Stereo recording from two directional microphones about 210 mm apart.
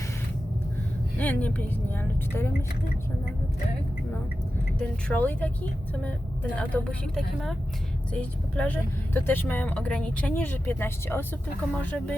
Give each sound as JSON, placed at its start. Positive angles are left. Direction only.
{"t": 1.2, "sound": "speech", "side_deg": 5}
{"t": 4.8, "sound": "speech", "side_deg": 5}